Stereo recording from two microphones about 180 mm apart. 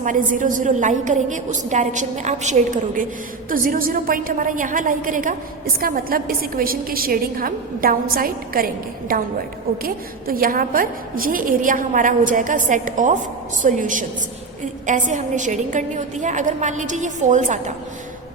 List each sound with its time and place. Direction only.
0.0 s a woman's voice: 45° right (ahead or behind)